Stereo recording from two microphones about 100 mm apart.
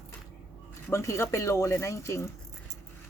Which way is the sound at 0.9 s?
30° left (ahead or behind).